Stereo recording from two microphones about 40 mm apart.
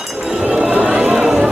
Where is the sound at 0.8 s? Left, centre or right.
Right.